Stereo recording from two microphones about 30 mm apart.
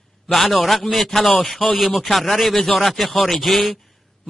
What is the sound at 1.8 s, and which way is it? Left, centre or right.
A man's voice, centre.